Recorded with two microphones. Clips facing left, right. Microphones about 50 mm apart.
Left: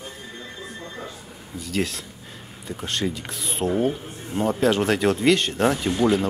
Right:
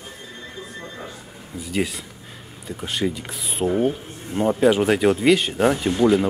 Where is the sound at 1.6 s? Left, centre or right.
Centre.